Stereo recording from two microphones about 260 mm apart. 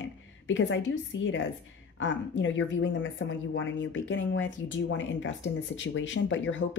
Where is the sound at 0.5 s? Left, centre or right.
Left.